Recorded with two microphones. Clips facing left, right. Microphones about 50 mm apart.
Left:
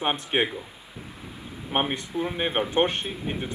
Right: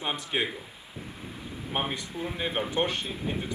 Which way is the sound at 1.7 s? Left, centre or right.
Left.